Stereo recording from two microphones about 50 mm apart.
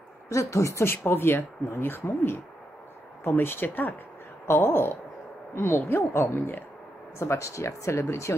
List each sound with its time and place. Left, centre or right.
0.3 s speech: left
0.8 s a woman's voice: left
7.2 s speech: left